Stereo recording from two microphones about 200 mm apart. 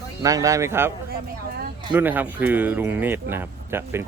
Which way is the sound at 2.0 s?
10° right (ahead or behind).